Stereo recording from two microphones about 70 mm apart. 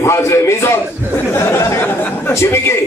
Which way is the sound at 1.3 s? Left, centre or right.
Left.